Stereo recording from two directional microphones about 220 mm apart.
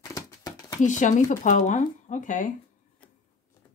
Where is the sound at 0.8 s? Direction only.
35° left (ahead or behind).